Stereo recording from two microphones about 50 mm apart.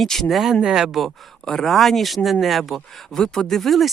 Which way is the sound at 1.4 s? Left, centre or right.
Centre.